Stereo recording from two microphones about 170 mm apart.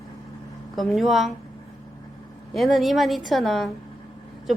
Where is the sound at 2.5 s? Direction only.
Centre (ahead or behind).